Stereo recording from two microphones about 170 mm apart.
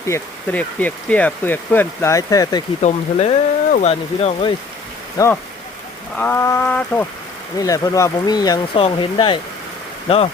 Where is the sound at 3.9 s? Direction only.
35° left (ahead or behind).